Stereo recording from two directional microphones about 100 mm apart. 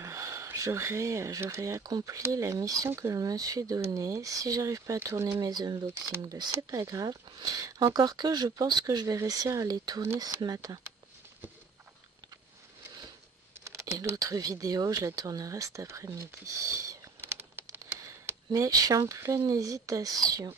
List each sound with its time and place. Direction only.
0.0 s speech: 30° right (ahead or behind)
5.3 s speech: 40° right (ahead or behind)
13.7 s typing: 25° right (ahead or behind)
13.9 s speech: 35° right (ahead or behind)
17.0 s a sound: 20° right (ahead or behind)
18.2 s speech: 30° right (ahead or behind)